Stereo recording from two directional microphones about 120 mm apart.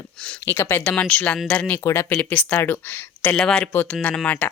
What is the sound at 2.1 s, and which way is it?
Speech, 10° left (ahead or behind).